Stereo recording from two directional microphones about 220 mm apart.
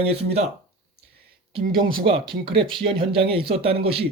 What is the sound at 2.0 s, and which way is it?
Speech, 25° right (ahead or behind).